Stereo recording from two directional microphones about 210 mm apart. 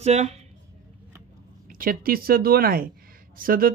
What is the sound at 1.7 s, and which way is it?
Speech, 40° right (ahead or behind).